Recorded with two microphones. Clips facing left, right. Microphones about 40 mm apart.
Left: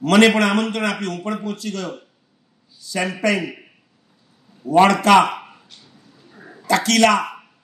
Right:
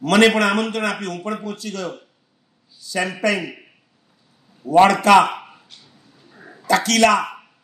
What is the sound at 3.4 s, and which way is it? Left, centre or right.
Speech, centre.